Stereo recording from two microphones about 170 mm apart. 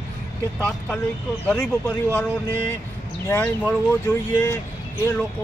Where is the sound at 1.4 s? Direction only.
5° left (ahead or behind).